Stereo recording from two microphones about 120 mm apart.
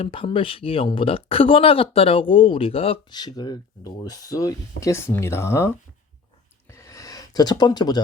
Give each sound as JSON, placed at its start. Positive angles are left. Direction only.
{"t": 0.0, "sound": "speech", "side_deg": 50}
{"t": 3.1, "sound": "speech", "side_deg": 35}
{"t": 6.7, "sound": "a sound", "side_deg": 25}